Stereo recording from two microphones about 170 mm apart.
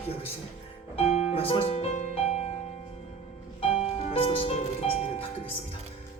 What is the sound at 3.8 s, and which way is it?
Music, 35° left (ahead or behind).